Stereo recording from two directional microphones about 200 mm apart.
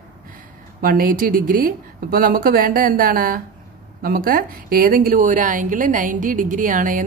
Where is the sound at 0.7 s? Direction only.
45° right (ahead or behind).